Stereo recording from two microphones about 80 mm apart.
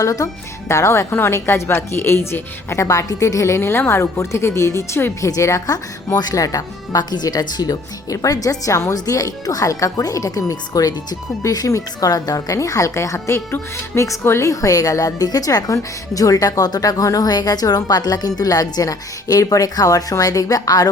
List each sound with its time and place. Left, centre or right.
0.0 s a woman's voice: left